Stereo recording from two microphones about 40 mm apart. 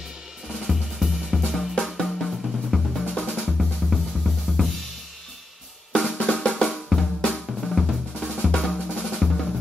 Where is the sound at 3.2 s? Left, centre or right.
Left.